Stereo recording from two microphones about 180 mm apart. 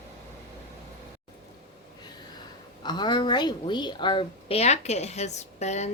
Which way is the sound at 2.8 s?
25° left (ahead or behind).